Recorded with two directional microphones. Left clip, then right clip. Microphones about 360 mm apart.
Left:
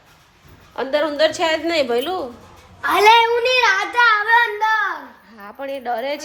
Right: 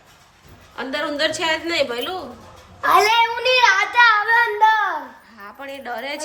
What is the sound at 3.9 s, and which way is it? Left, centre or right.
Child singing, centre.